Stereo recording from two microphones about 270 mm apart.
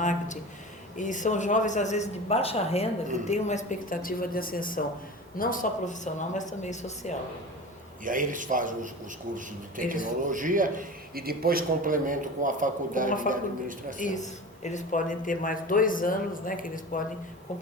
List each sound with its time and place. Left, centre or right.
0.0 s speech: left
8.0 s a man's voice: right
13.1 s speech: left
13.3 s a man's voice: right
14.0 s speech: left